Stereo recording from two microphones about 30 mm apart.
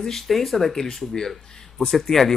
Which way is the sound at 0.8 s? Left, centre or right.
Left.